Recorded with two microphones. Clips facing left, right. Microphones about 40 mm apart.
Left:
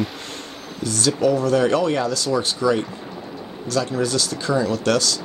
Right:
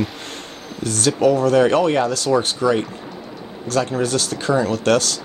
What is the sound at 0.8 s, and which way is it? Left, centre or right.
Speech, right.